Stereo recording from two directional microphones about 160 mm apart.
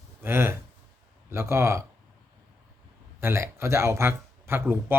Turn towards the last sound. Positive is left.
turn(degrees=-15)  # may be behind; listen again after turning